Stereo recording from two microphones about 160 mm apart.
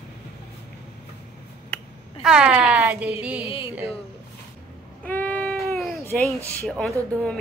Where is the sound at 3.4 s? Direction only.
35° left (ahead or behind).